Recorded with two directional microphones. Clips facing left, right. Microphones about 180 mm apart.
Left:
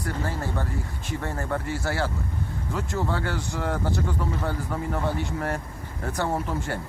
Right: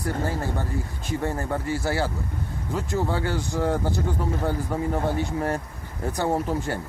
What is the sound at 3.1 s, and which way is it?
Speech, 15° right (ahead or behind).